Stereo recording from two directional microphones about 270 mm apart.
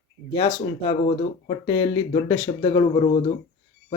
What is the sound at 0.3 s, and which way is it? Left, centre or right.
Speech, centre.